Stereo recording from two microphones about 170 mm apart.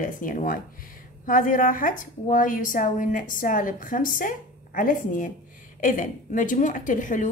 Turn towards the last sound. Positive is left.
turn(degrees=50)  # may be behind; listen again after turning